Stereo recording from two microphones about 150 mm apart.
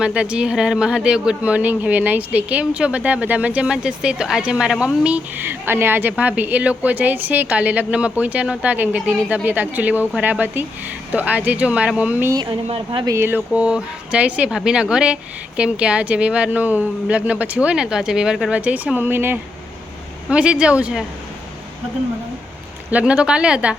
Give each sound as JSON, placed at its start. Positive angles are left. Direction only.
{"t": 0.0, "sound": "speech", "side_deg": -5}
{"t": 12.3, "sound": "speech", "side_deg": -30}
{"t": 13.1, "sound": "speech", "side_deg": -15}
{"t": 22.9, "sound": "speech", "side_deg": -10}